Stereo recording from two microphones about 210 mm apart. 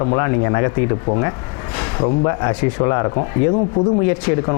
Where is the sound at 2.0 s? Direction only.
20° left (ahead or behind).